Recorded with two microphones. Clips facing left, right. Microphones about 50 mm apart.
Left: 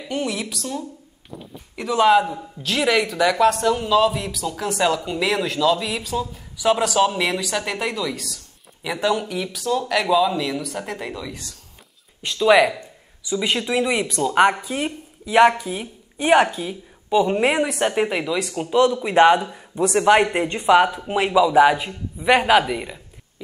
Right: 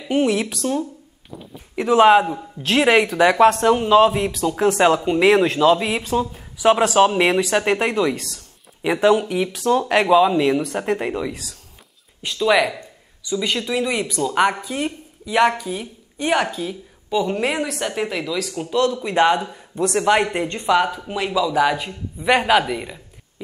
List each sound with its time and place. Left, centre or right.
0.1 s a man's voice: right
9.6 s speech: right
12.4 s a man's voice: centre